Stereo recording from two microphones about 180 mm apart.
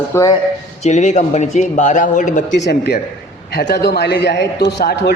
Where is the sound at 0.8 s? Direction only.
40° left (ahead or behind).